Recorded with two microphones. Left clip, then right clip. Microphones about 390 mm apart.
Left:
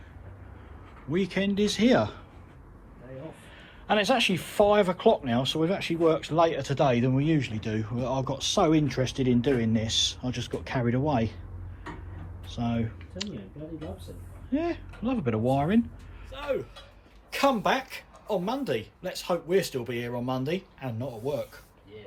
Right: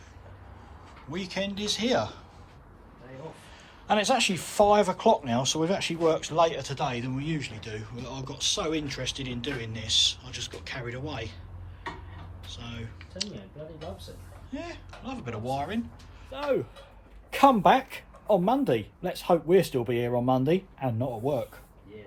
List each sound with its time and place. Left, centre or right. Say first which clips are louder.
1.1 s speech: left 4 dB; centre
3.8 s speech: even; centre
12.5 s speech: left 10 dB; centre
14.5 s speech: left 9 dB; centre